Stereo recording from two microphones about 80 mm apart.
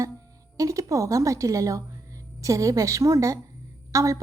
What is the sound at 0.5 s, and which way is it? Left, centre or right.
A woman's voice, right.